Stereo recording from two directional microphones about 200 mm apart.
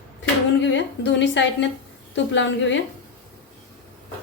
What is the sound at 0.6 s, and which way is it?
A woman's voice, 65° left (ahead or behind).